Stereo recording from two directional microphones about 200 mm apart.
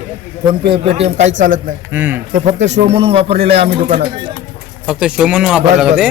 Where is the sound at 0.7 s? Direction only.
30° right (ahead or behind).